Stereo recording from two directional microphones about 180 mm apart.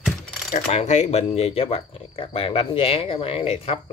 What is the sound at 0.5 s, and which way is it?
Speech, 40° left (ahead or behind).